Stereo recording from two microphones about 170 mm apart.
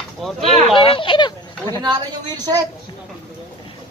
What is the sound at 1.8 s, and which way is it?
Speech, 25° right (ahead or behind).